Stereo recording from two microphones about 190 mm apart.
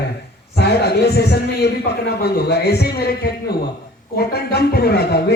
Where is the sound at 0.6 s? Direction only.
60° left (ahead or behind).